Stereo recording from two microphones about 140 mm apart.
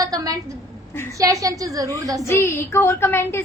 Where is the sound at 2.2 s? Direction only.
15° left (ahead or behind).